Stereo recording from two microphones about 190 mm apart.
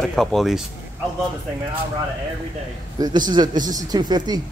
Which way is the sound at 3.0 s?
20° right (ahead or behind).